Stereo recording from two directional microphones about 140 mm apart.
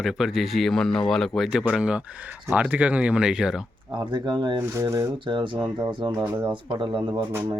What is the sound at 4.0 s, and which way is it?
Speech, 35° right (ahead or behind).